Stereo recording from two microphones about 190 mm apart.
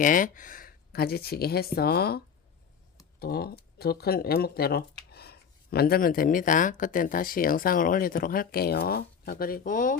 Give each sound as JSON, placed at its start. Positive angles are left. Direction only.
{"t": 0.0, "sound": "speech", "side_deg": 45}